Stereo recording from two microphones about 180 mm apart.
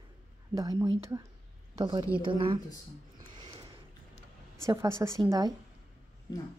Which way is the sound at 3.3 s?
25° right (ahead or behind).